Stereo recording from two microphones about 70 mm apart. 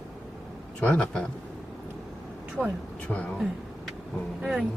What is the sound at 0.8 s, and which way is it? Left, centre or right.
Speech, centre.